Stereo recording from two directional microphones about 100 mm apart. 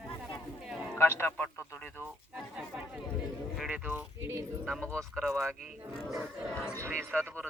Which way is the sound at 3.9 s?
25° right (ahead or behind).